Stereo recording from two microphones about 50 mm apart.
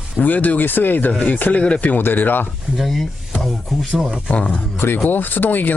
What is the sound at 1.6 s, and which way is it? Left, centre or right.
Speech, left.